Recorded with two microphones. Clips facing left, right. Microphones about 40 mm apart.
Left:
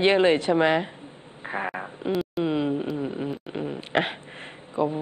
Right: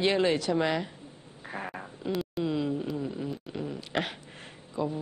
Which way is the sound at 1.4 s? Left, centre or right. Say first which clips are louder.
Left 8 dB; left.